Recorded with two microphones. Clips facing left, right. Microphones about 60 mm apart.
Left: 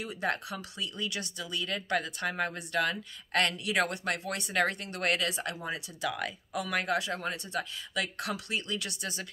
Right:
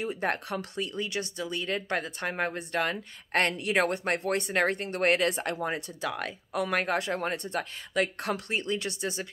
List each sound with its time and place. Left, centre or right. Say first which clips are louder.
0.0 s speech: right 3 dB; right